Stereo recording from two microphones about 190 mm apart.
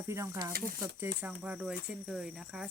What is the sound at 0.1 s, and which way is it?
Speech, 15° right (ahead or behind).